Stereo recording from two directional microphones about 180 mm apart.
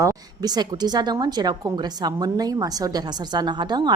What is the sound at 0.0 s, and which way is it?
A woman's voice, 20° right (ahead or behind).